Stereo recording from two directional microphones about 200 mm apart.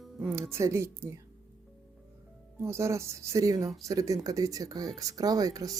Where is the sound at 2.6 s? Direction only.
15° right (ahead or behind).